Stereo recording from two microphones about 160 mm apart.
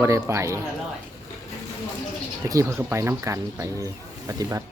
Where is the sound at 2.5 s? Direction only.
20° right (ahead or behind).